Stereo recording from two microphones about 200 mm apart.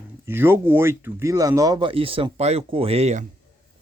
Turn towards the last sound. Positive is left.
turn(degrees=-35)  # may be behind; listen again after turning